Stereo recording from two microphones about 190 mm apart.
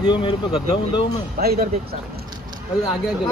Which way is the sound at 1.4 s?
55° right (ahead or behind).